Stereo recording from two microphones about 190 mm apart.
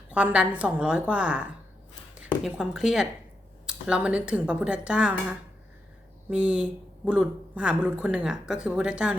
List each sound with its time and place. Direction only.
0.1 s a woman's voice: 5° right (ahead or behind)